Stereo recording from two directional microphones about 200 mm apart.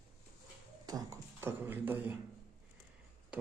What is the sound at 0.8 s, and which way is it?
Speech, 15° right (ahead or behind).